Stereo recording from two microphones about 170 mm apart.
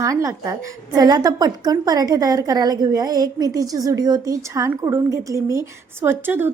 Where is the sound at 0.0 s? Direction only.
20° right (ahead or behind).